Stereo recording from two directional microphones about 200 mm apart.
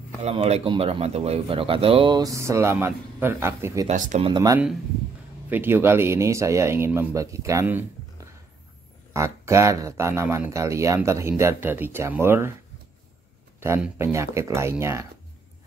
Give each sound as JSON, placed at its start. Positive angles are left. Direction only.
{"t": 0.2, "sound": "speech", "side_deg": -30}
{"t": 3.8, "sound": "speech", "side_deg": -35}
{"t": 4.3, "sound": "speech", "side_deg": -20}
{"t": 13.6, "sound": "speech", "side_deg": -10}